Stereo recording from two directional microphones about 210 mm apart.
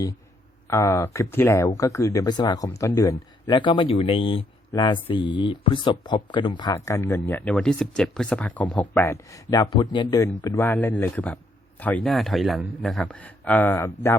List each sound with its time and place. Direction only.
0.7 s a man's voice: 15° left (ahead or behind)